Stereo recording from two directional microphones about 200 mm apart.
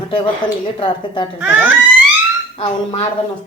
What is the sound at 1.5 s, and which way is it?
Speech, 10° right (ahead or behind).